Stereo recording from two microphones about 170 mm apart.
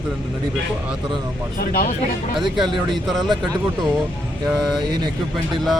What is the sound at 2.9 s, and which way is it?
Speech, centre (ahead or behind).